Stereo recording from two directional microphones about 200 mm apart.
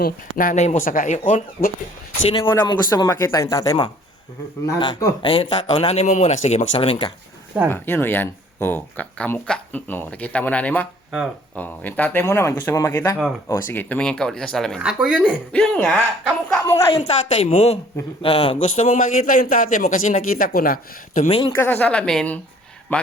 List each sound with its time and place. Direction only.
0.0 s a man's voice: 45° left (ahead or behind)
2.3 s speech: 20° left (ahead or behind)
7.7 s speech: 10° left (ahead or behind)
16.9 s a man's voice: 30° left (ahead or behind)
18.8 s a man's voice: 40° left (ahead or behind)
21.2 s speech: 25° left (ahead or behind)
21.5 s speech: 10° left (ahead or behind)